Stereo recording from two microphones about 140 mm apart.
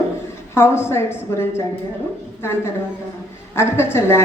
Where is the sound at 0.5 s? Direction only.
20° left (ahead or behind).